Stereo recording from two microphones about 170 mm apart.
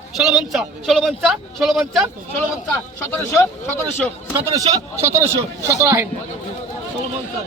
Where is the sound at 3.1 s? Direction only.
15° left (ahead or behind).